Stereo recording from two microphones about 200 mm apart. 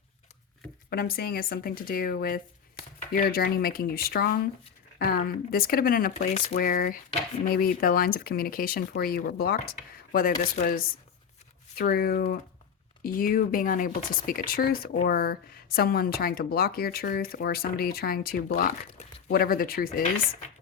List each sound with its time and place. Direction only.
0.9 s speech: 50° left (ahead or behind)
11.8 s speech: 50° left (ahead or behind)